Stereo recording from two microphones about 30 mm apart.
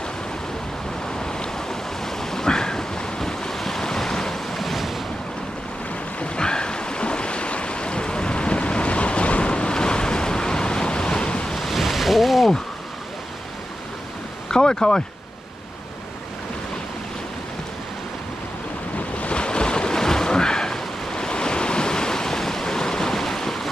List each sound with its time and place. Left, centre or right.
1.2 s waves: left
3.5 s waves: centre
4.5 s waves: centre
6.3 s waves: left
11.5 s a sound: centre
14.5 s a sound: left
19.1 s waves: left
23.2 s ocean: centre